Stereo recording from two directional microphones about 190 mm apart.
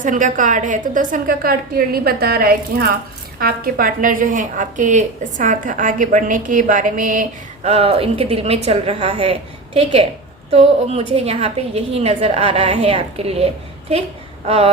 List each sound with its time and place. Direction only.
0.0 s a woman's voice: 45° right (ahead or behind)